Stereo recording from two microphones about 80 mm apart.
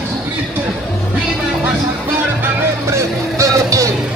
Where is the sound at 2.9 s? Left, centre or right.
Right.